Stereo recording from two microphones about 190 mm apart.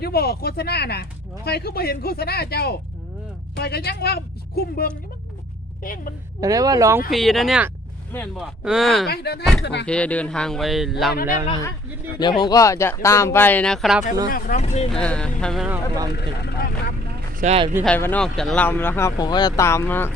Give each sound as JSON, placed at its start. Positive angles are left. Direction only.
{"t": 0.0, "sound": "a woman's voice", "side_deg": 55}
{"t": 6.4, "sound": "speech", "side_deg": -20}
{"t": 7.1, "sound": "a man's voice", "side_deg": 0}
{"t": 9.0, "sound": "speech", "side_deg": 55}
{"t": 9.8, "sound": "a man's voice", "side_deg": 5}
{"t": 11.1, "sound": "a woman's voice", "side_deg": 50}
{"t": 12.4, "sound": "speech", "side_deg": 20}
{"t": 14.3, "sound": "a woman's voice", "side_deg": 50}
{"t": 14.6, "sound": "speech", "side_deg": 35}
{"t": 14.8, "sound": "a man's voice", "side_deg": 5}
{"t": 16.1, "sound": "speech", "side_deg": 60}
{"t": 17.3, "sound": "speech", "side_deg": -35}
{"t": 17.8, "sound": "speech", "side_deg": 10}